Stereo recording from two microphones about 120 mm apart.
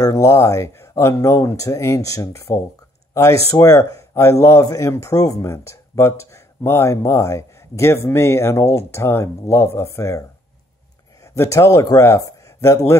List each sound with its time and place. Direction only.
0.0 s speech: 30° left (ahead or behind)
11.3 s speech: 25° left (ahead or behind)